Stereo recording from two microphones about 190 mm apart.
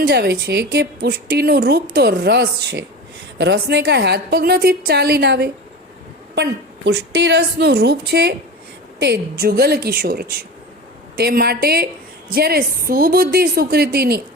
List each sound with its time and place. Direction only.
0.0 s a woman's voice: 55° right (ahead or behind)